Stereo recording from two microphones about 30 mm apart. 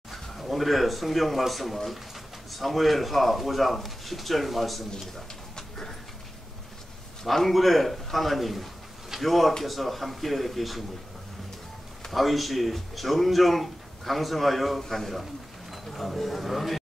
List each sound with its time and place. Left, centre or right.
0.1 s speech: centre
5.6 s a sound: centre
7.2 s speech: centre
12.1 s a man's voice: centre